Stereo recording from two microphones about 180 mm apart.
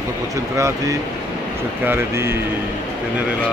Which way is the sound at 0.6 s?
15° right (ahead or behind).